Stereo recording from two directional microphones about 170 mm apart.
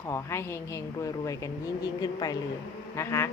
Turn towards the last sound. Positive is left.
turn(degrees=15)  # may be behind; listen again after turning